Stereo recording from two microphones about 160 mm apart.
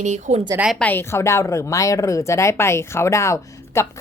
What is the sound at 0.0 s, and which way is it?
Speech, 45° right (ahead or behind).